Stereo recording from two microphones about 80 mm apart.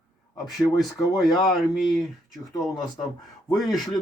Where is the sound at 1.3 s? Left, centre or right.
Centre.